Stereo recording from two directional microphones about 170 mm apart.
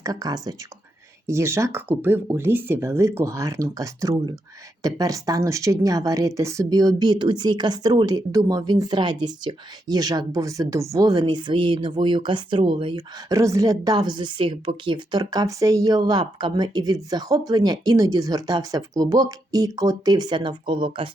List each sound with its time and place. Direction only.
0.0 s speech: 20° right (ahead or behind)